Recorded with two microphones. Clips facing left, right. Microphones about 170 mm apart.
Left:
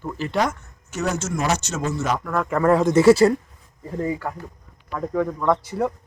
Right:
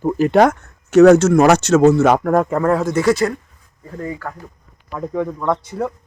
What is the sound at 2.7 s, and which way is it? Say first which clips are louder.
Speech: left 2 dB; 15° left (ahead or behind).